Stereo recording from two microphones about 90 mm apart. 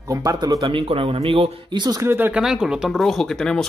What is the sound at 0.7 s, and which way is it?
Speech, 80° right.